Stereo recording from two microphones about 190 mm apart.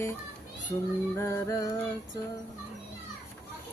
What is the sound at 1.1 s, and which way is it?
Child singing, 15° left (ahead or behind).